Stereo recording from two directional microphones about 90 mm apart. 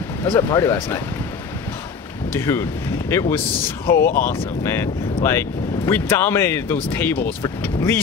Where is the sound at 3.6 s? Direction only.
30° left (ahead or behind).